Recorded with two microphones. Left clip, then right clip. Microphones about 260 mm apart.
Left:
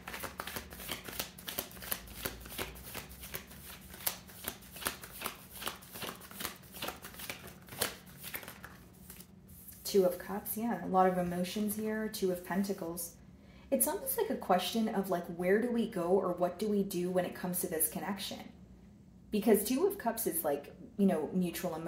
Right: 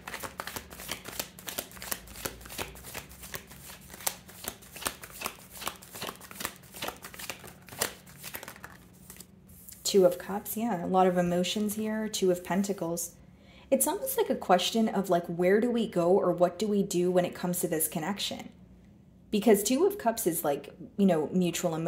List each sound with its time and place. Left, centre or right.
0.0 s shuffling cards: right
9.8 s speech: right
19.3 s speech: right